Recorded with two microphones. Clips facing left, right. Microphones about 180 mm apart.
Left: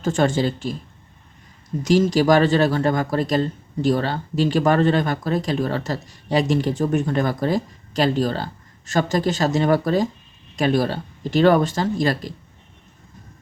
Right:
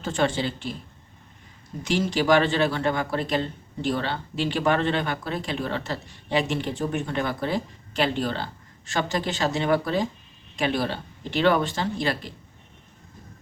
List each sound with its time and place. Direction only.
0.0 s speech: 45° left (ahead or behind)
1.8 s a man's voice: 40° left (ahead or behind)